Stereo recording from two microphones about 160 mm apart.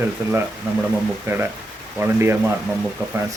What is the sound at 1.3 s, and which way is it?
Speech, 15° right (ahead or behind).